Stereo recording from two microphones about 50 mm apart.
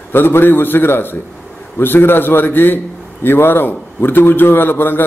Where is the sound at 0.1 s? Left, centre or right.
Left.